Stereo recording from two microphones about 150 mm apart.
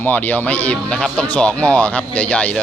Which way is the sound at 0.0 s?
10° left (ahead or behind).